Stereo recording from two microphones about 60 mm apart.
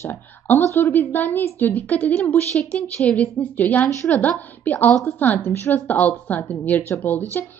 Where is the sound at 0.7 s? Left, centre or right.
Left.